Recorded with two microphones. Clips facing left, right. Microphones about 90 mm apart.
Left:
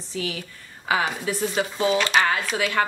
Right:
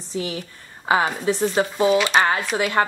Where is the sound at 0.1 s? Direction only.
25° right (ahead or behind).